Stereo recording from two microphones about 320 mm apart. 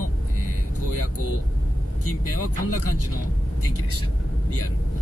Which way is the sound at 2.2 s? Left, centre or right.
Left.